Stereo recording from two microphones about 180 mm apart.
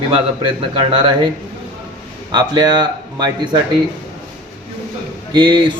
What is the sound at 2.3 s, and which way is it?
A man's voice, 25° right (ahead or behind).